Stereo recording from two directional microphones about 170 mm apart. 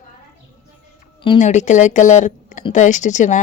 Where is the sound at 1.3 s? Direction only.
45° left (ahead or behind).